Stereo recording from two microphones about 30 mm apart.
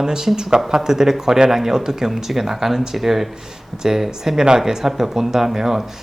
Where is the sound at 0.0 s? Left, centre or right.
Centre.